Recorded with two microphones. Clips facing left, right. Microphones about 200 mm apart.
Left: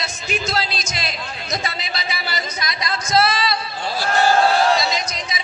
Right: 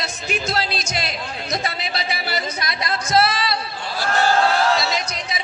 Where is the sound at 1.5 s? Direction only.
60° right (ahead or behind).